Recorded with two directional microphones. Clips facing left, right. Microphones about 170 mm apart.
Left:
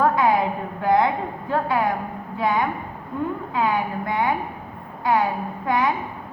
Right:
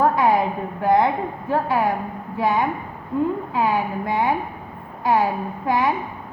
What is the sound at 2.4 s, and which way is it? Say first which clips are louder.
A woman's voice: right 2 dB; 25° right (ahead or behind).